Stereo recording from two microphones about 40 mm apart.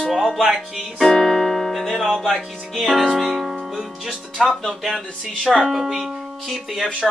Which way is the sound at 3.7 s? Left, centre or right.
Centre.